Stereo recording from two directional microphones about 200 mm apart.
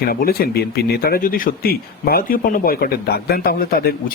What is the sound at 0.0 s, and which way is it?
Speech, 50° left (ahead or behind).